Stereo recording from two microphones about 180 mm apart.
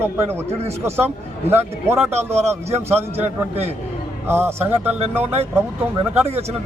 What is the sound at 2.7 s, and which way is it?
Speech, 35° right (ahead or behind).